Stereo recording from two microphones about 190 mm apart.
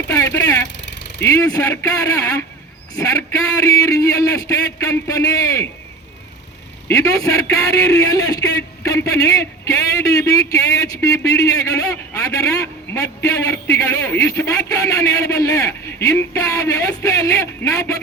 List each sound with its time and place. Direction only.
0.1 s a man's voice: 15° left (ahead or behind)
6.8 s a man's voice: 15° left (ahead or behind)